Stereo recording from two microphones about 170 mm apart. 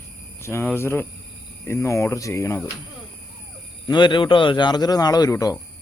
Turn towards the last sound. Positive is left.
turn(degrees=20)  # may be behind; listen again after turning